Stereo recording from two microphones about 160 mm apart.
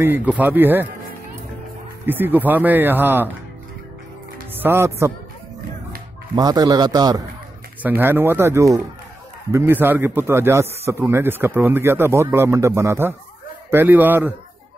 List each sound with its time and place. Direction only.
0.0 s a man's voice: 10° right (ahead or behind)
2.0 s a man's voice: 10° right (ahead or behind)
4.6 s a man's voice: 15° right (ahead or behind)
6.3 s a man's voice: 25° right (ahead or behind)
7.8 s a man's voice: 15° right (ahead or behind)